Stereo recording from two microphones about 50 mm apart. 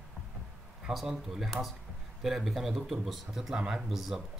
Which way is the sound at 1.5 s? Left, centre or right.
Centre.